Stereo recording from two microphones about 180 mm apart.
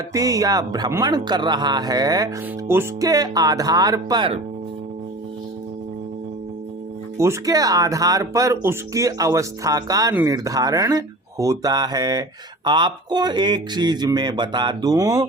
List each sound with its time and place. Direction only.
0.1 s speech: 20° right (ahead or behind)
7.2 s speech: 20° right (ahead or behind)